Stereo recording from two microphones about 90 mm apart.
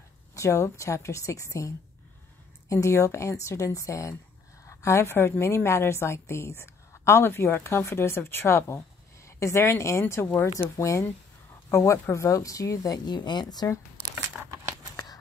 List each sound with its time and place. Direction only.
0.3 s speech: 35° left (ahead or behind)
2.7 s a woman's voice: 35° left (ahead or behind); by 13.7 s 50° left (ahead or behind)